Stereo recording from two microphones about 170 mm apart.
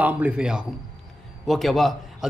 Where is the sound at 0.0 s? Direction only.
5° right (ahead or behind).